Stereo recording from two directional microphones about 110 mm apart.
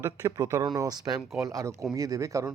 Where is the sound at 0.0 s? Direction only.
30° right (ahead or behind).